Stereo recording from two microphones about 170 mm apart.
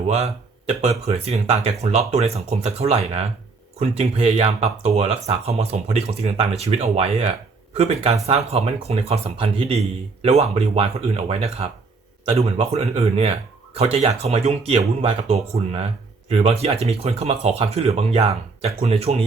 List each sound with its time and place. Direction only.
0.1 s speech: 40° right (ahead or behind)